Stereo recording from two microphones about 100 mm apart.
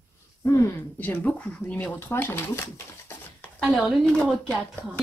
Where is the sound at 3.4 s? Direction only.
10° left (ahead or behind).